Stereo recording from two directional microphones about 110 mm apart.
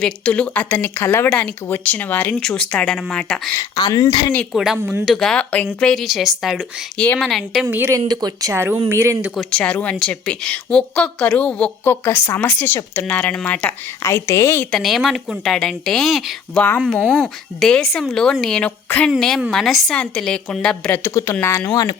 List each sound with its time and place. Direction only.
0.0 s a woman's voice: 10° left (ahead or behind)
3.8 s speech: 35° left (ahead or behind)
4.5 s speech: 5° right (ahead or behind)
6.9 s a woman's voice: 10° left (ahead or behind)
7.3 s speech: centre (ahead or behind)
7.9 s speech: 35° right (ahead or behind)
9.3 s a woman's voice: 5° left (ahead or behind)
11.9 s a woman's voice: 20° left (ahead or behind)
14.0 s a woman's voice: 25° left (ahead or behind)
14.8 s speech: centre (ahead or behind)
18.9 s a woman's voice: 15° left (ahead or behind)
19.4 s a woman's voice: centre (ahead or behind)
21.0 s a woman's voice: 25° left (ahead or behind)